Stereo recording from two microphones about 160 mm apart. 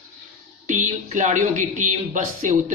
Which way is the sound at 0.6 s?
50° right (ahead or behind).